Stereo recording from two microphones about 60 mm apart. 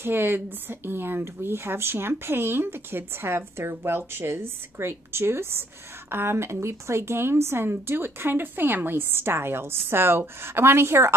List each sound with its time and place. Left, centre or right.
0.0 s speech: right